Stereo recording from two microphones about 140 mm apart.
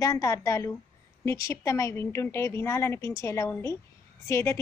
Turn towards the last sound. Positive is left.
turn(degrees=20)  # may be behind; listen again after turning